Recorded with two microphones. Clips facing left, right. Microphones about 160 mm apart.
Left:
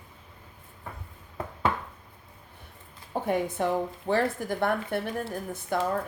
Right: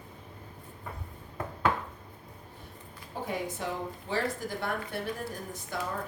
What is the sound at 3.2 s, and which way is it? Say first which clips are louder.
A woman's voice: left 7 dB; 55° left (ahead or behind).